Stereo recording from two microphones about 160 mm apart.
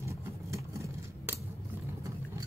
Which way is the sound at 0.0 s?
20° right (ahead or behind).